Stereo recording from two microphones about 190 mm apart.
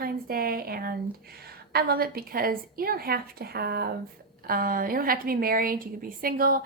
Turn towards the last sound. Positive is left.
turn(degrees=-50)  # may be behind; listen again after turning